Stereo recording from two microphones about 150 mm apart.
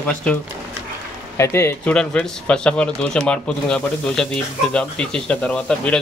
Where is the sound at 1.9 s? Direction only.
5° left (ahead or behind).